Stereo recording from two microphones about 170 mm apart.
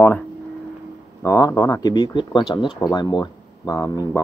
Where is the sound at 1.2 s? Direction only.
20° left (ahead or behind).